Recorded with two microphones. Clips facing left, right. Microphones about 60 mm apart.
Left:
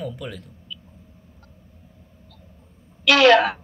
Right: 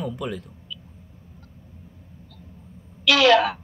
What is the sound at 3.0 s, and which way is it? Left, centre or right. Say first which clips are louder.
Speech: left 2 dB; left.